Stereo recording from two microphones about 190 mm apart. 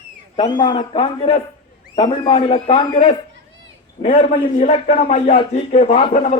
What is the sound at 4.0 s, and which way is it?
A man's voice, 40° left (ahead or behind).